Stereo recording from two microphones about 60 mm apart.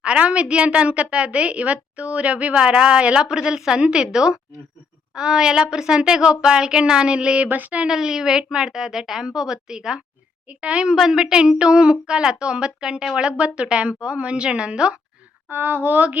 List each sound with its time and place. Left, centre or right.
0.0 s a woman's voice: centre
7.4 s a woman's voice: right
7.9 s a woman's voice: centre
10.9 s a woman's voice: centre
15.4 s speech: right